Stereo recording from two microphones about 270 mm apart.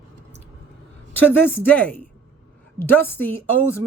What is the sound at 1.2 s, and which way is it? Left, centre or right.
Speech, centre.